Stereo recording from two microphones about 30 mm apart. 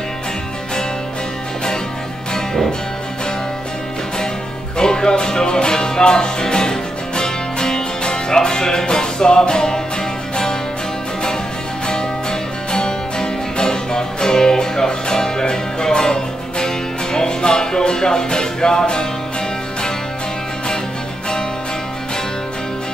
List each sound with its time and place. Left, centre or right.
4.7 s music: left
11.9 s music: left